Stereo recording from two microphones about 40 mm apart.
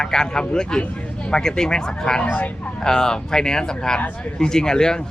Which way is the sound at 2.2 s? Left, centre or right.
Left.